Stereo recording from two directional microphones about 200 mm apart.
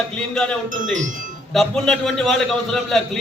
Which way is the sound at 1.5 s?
Centre (ahead or behind).